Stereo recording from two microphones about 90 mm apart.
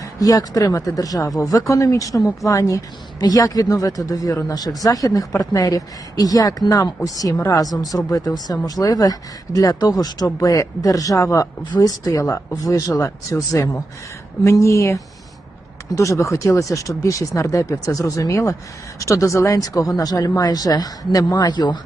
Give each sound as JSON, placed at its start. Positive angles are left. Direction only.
{"t": 0.0, "sound": "speech", "side_deg": 40}